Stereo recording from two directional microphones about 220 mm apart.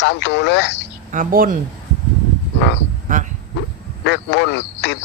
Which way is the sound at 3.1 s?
35° right (ahead or behind).